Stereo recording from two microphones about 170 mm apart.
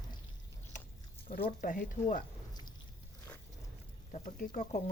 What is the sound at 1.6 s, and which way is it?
Speech, 50° left (ahead or behind).